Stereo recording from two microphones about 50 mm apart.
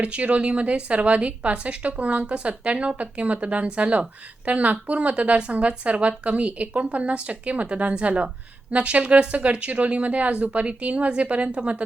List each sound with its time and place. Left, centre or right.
0.0 s speech: right